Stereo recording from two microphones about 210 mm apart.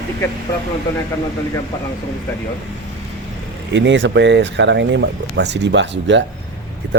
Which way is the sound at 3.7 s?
60° right (ahead or behind).